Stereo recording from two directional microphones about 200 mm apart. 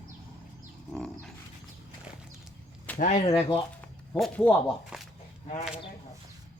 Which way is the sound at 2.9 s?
35° left (ahead or behind).